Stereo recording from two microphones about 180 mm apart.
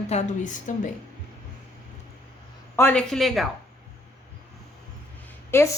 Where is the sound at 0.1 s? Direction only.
40° left (ahead or behind).